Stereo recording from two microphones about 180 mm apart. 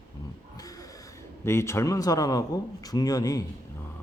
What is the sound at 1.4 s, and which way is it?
A man's voice, 15° left (ahead or behind).